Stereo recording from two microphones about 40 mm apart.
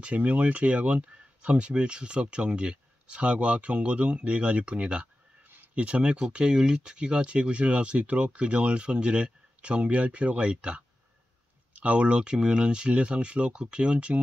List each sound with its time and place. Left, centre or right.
0.0 s speech: right
11.7 s speech: right